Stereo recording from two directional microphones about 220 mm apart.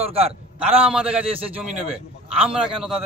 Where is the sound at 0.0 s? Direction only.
25° right (ahead or behind).